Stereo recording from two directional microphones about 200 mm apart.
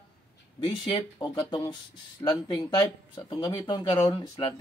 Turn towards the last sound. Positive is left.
turn(degrees=20)  # may be behind; listen again after turning